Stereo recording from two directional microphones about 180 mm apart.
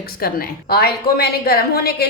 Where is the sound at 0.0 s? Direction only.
55° left (ahead or behind).